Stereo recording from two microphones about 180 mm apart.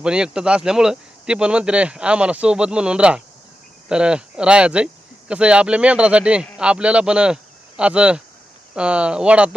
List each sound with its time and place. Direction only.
0.0 s speech: 5° right (ahead or behind)